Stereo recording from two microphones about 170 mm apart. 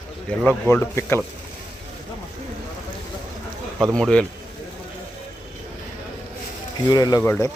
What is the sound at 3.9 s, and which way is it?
Speech, 5° left (ahead or behind).